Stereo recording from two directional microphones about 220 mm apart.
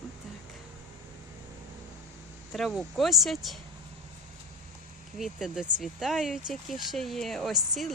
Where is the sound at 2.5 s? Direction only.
Centre (ahead or behind).